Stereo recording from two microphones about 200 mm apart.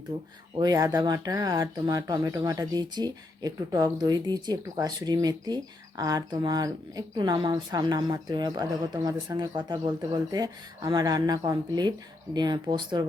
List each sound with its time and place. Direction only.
0.5 s speech: 20° right (ahead or behind)